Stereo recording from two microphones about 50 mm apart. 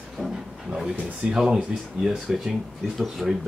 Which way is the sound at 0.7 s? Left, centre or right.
Centre.